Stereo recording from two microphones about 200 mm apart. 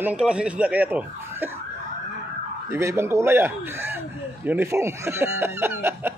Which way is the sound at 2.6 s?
15° right (ahead or behind).